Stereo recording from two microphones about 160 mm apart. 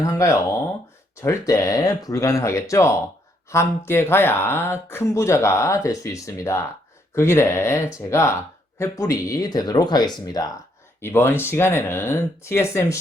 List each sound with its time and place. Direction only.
0.0 s speech: 20° left (ahead or behind)